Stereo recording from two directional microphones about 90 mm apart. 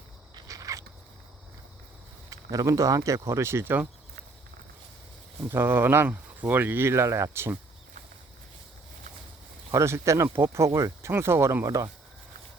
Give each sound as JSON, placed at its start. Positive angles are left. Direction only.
{"t": 0.3, "sound": "a sound", "side_deg": -40}
{"t": 2.3, "sound": "speech", "side_deg": -40}
{"t": 5.4, "sound": "speech", "side_deg": -25}
{"t": 9.7, "sound": "speech", "side_deg": -30}